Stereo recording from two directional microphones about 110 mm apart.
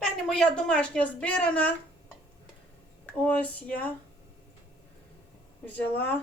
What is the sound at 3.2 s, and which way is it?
Speech, 15° left (ahead or behind).